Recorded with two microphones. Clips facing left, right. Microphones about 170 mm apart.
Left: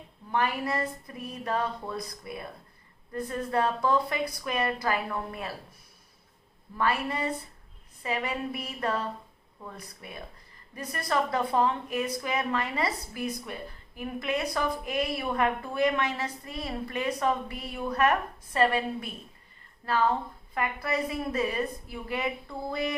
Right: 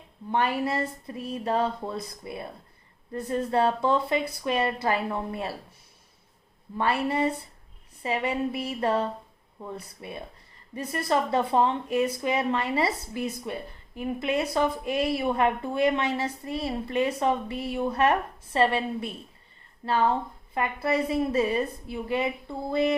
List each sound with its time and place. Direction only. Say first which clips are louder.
0.3 s speech: right 3 dB; 25° right (ahead or behind)
6.7 s speech: right 3 dB; 30° right (ahead or behind)